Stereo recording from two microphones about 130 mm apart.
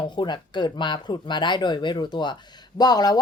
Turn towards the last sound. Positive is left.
turn(degrees=30)  # may be behind; listen again after turning